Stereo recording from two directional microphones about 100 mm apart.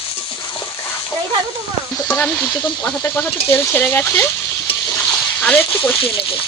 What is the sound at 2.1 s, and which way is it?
Speech, 15° left (ahead or behind).